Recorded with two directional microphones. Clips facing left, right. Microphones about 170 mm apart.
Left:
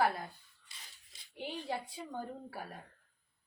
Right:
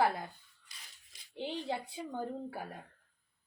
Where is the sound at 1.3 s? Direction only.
25° right (ahead or behind).